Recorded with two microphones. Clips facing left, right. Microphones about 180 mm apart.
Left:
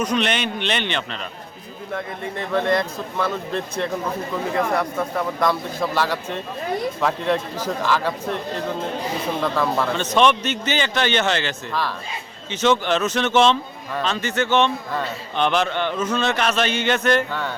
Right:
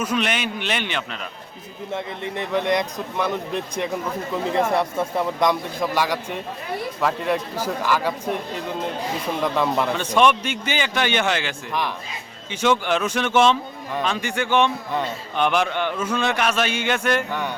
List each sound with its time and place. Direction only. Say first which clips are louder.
0.0 s speech: left 2 dB; 5° right (ahead or behind)
1.9 s speech: even; 20° right (ahead or behind)